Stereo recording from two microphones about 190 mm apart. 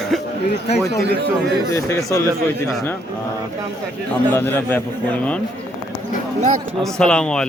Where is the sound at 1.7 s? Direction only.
15° left (ahead or behind).